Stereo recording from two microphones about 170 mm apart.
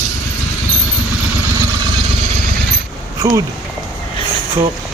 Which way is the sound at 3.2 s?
20° right (ahead or behind).